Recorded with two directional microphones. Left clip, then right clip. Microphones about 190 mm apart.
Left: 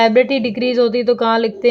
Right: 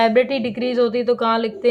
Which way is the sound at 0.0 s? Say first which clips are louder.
Left 4 dB; 25° left (ahead or behind).